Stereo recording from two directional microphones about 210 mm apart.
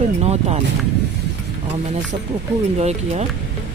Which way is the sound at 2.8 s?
30° right (ahead or behind).